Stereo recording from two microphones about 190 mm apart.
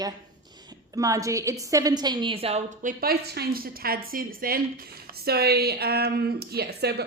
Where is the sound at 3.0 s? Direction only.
55° right (ahead or behind).